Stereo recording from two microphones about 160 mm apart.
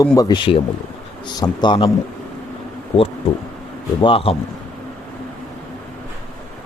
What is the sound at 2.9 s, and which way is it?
Speech, 35° left (ahead or behind).